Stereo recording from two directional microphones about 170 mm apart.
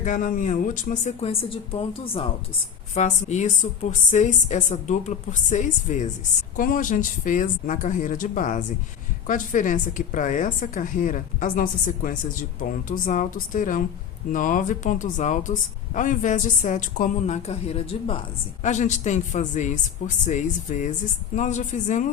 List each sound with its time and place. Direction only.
0.0 s a woman's voice: 50° left (ahead or behind); by 2.2 s 35° left (ahead or behind)
2.9 s a woman's voice: 45° left (ahead or behind)
18.6 s a woman's voice: 45° left (ahead or behind)